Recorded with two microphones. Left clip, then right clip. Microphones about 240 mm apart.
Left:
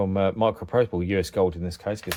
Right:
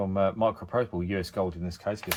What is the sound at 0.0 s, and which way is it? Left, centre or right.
Speech, left.